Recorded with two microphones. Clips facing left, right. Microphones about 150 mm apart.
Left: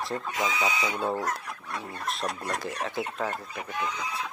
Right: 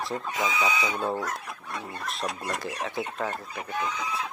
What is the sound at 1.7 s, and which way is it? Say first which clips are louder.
Speech: left 1 dB; centre (ahead or behind).